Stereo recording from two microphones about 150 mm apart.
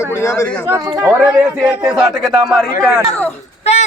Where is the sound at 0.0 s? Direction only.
20° left (ahead or behind).